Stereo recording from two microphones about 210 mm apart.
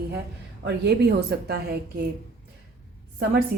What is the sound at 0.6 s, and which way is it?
Speech, 50° right (ahead or behind).